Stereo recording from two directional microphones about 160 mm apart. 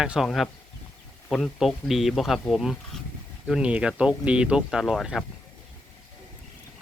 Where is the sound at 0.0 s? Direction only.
5° right (ahead or behind).